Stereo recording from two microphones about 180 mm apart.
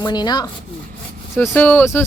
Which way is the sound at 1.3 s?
10° left (ahead or behind).